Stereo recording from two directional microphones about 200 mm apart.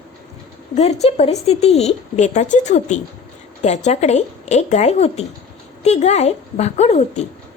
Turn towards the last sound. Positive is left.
turn(degrees=35)  # may be behind; listen again after turning